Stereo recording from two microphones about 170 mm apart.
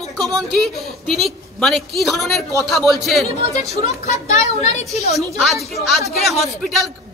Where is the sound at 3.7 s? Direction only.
40° left (ahead or behind).